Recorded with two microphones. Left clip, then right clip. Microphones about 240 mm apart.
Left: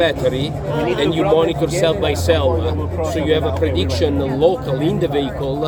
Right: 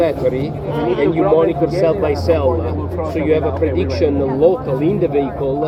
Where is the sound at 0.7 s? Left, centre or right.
Left.